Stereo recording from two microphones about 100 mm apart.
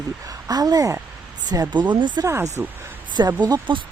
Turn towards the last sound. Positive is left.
turn(degrees=-55)  # may be behind; listen again after turning